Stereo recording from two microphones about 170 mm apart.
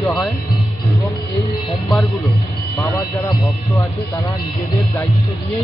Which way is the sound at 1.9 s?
Centre (ahead or behind).